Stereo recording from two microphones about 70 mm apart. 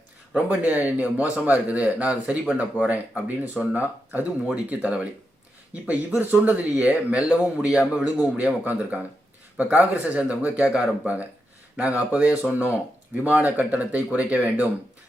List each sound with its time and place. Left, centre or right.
0.3 s a man's voice: right
8.4 s speech: right